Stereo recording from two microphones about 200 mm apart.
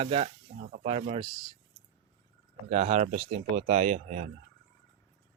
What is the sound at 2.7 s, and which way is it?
Speech, 35° right (ahead or behind).